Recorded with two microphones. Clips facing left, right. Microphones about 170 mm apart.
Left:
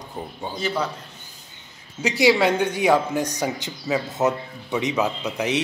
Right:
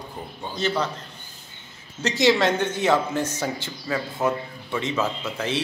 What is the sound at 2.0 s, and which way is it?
Speech, 10° left (ahead or behind).